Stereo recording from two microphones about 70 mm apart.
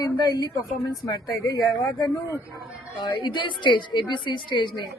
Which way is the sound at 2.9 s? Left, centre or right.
Left.